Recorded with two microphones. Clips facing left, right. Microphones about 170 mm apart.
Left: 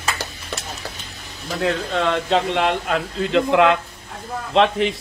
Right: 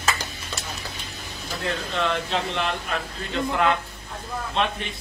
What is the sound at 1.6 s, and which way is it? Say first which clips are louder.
A man's voice: left 6 dB; 70° left (ahead or behind).